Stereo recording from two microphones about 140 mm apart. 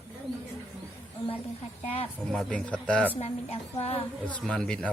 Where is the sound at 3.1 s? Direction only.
50° left (ahead or behind).